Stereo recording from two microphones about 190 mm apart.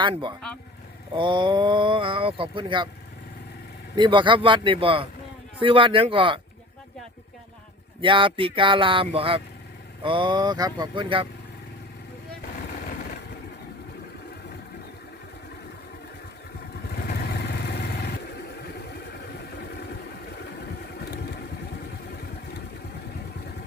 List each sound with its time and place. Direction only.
0.0 s speech: 25° right (ahead or behind)
3.9 s speech: 25° right (ahead or behind)
8.0 s speech: 25° right (ahead or behind)
17.1 s vehicle: 55° left (ahead or behind)
21.0 s vehicle: 55° left (ahead or behind)